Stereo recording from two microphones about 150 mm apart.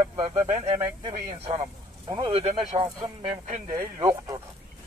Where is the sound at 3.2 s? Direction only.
55° right (ahead or behind).